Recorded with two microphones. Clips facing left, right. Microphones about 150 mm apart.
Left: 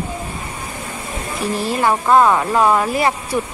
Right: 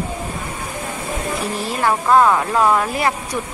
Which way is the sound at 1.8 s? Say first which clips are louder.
Left 1 dB; 5° left (ahead or behind).